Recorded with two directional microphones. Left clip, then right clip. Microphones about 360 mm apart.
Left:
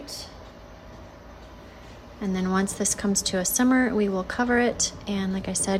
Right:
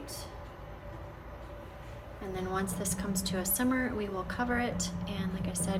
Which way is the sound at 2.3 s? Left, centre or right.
Left.